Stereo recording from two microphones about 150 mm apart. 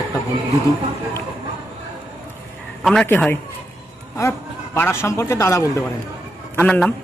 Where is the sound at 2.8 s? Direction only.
5° left (ahead or behind).